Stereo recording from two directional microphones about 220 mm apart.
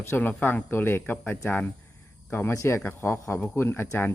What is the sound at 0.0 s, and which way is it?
Speech, 10° left (ahead or behind).